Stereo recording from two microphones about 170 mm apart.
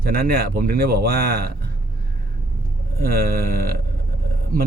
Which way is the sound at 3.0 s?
60° right (ahead or behind).